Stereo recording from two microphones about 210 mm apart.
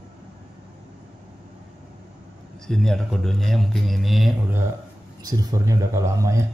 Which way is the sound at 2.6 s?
Centre (ahead or behind).